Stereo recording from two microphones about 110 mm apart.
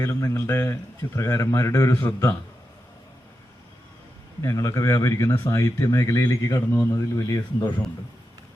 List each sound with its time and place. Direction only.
0.0 s speech: 25° left (ahead or behind)
4.4 s speech: 30° left (ahead or behind)